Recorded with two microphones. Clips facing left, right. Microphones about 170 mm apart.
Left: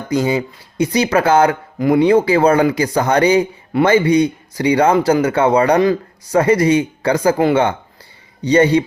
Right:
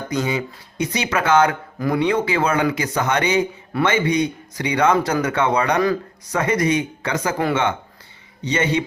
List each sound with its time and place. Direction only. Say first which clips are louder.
0.1 s speech: left 7 dB; 30° left (ahead or behind)